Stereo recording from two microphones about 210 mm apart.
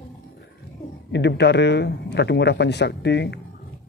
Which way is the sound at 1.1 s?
55° left (ahead or behind).